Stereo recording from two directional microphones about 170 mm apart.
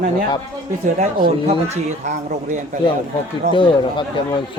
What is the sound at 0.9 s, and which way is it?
Speech, 40° right (ahead or behind).